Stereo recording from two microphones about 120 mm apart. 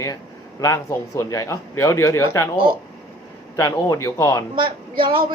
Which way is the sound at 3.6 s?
30° left (ahead or behind).